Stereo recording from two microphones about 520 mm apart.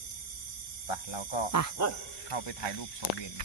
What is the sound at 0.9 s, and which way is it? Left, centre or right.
Cricket, left.